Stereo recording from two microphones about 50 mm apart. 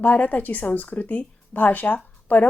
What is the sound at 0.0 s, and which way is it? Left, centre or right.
Speech, left.